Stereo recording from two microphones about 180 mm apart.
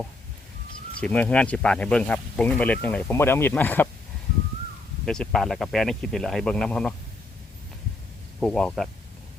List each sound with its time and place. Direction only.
0.9 s speech: 5° left (ahead or behind)
5.0 s speech: 5° left (ahead or behind)
8.4 s speech: 5° left (ahead or behind)